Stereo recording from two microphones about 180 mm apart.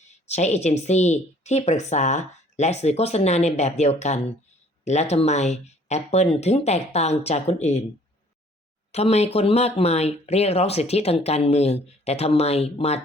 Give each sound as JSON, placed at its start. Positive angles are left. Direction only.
{"t": 0.3, "sound": "speech", "side_deg": 40}
{"t": 8.9, "sound": "speech", "side_deg": 35}